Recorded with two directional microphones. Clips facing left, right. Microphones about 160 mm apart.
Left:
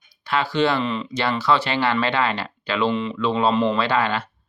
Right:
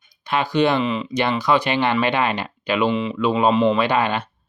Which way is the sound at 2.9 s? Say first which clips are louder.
Right 2 dB; 5° right (ahead or behind).